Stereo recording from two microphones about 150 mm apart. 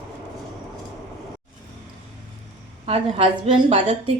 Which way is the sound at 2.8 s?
40° right (ahead or behind).